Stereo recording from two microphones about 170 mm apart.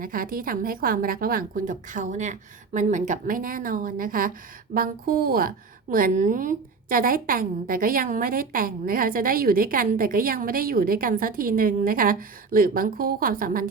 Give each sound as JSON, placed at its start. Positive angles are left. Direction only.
{"t": 0.0, "sound": "a woman's voice", "side_deg": -55}